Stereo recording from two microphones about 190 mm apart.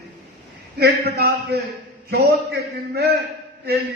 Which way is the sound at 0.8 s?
55° right (ahead or behind).